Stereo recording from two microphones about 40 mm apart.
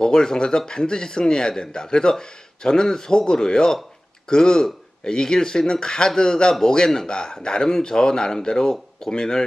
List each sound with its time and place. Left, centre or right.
0.0 s speech: centre